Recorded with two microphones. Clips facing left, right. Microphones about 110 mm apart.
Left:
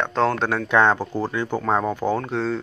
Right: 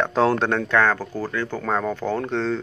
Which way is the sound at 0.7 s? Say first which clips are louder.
Left 6 dB; 20° left (ahead or behind).